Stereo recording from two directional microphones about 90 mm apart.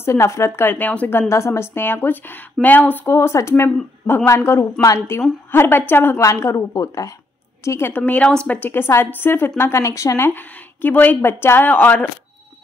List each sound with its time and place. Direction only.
0.0 s a woman's voice: 30° left (ahead or behind)
1.3 s a woman's voice: 30° left (ahead or behind)
7.9 s a woman's voice: 15° left (ahead or behind)